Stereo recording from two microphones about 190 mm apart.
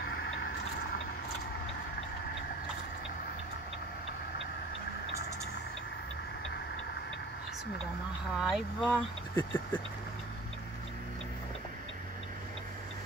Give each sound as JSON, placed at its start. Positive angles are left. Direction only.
{"t": 8.4, "sound": "speech", "side_deg": 0}
{"t": 9.3, "sound": "speech", "side_deg": 15}